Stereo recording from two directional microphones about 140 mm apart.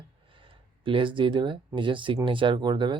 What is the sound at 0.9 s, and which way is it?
Speech, 35° right (ahead or behind).